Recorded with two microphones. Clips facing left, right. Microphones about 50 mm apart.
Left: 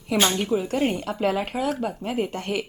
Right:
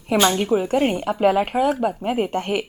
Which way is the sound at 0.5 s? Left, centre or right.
Right.